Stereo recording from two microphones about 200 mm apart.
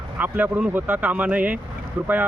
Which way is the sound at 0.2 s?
10° right (ahead or behind).